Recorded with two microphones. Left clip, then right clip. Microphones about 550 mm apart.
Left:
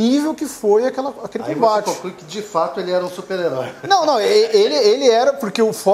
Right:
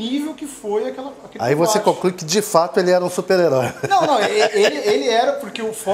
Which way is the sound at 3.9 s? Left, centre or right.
Left.